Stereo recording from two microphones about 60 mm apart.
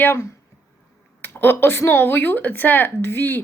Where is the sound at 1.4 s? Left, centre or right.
Left.